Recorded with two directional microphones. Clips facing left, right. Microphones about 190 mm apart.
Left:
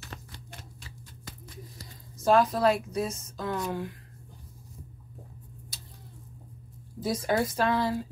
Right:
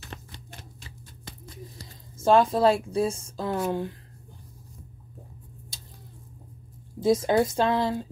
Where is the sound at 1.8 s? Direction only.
25° right (ahead or behind).